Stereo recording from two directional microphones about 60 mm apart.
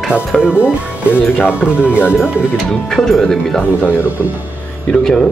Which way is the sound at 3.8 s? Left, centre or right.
Left.